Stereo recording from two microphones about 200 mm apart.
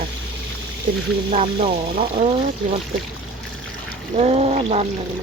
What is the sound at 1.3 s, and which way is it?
Speech, 30° right (ahead or behind).